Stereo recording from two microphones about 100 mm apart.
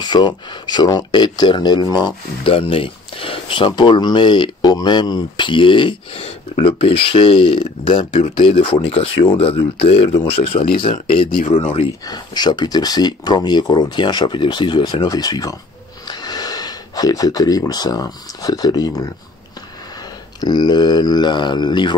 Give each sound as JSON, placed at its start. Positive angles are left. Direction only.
{"t": 0.0, "sound": "speech", "side_deg": 50}
{"t": 2.4, "sound": "speech", "side_deg": 65}
{"t": 6.2, "sound": "speech", "side_deg": 65}
{"t": 12.1, "sound": "speech", "side_deg": 45}
{"t": 20.3, "sound": "speech", "side_deg": 45}